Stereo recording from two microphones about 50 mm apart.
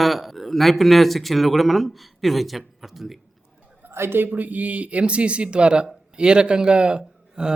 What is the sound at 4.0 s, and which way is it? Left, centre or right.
Speech, right.